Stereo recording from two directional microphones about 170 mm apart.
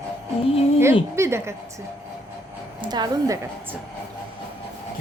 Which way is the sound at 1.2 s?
15° right (ahead or behind).